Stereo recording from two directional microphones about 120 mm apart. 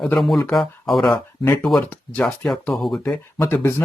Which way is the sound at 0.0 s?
5° left (ahead or behind).